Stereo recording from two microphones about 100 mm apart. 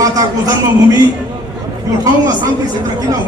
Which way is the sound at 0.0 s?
35° right (ahead or behind).